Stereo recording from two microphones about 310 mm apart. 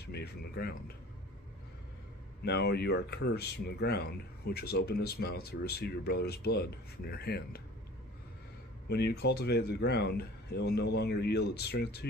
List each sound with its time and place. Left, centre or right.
0.0 s speech: left
2.4 s speech: left
8.9 s speech: left